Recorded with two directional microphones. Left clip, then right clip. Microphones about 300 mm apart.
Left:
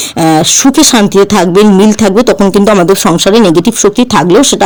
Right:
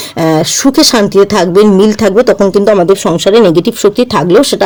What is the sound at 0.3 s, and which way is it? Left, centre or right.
Speech, centre.